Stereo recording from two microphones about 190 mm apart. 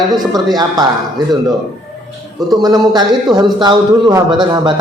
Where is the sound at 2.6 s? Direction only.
20° right (ahead or behind).